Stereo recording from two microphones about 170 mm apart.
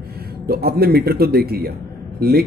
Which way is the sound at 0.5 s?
65° right (ahead or behind).